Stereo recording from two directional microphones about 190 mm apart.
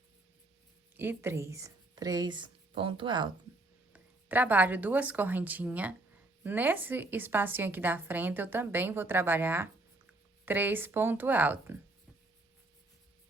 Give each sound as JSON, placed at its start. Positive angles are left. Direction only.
{"t": 0.9, "sound": "speech", "side_deg": -10}
{"t": 3.9, "sound": "a woman's voice", "side_deg": -10}